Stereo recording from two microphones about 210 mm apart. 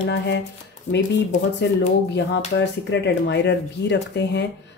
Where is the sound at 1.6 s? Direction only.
55° left (ahead or behind).